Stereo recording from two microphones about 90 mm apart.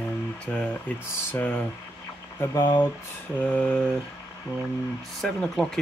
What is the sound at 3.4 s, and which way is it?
Speech, 15° left (ahead or behind).